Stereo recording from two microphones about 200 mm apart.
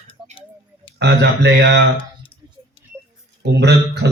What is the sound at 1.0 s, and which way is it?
Speech, 55° right (ahead or behind).